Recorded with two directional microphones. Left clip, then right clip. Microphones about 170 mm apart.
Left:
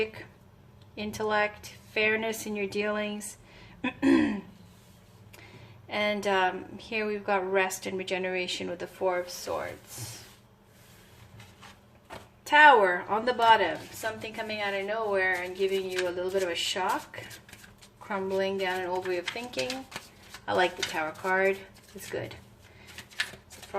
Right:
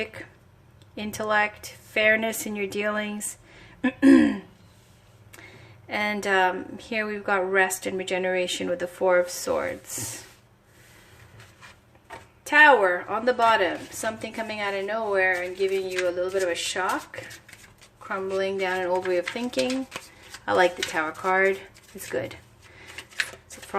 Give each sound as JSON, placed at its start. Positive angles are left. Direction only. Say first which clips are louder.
{"t": 0.0, "sound": "a woman's voice", "louder": "left 1 dB", "side_deg": -30}
{"t": 5.9, "sound": "a woman's voice", "louder": "right 3 dB", "side_deg": -30}
{"t": 12.5, "sound": "a woman's voice", "louder": "right 2 dB", "side_deg": -15}
{"t": 18.1, "sound": "a woman's voice", "louder": "right 2 dB", "side_deg": -20}